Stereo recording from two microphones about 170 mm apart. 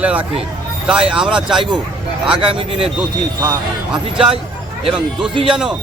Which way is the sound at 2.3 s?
30° right (ahead or behind).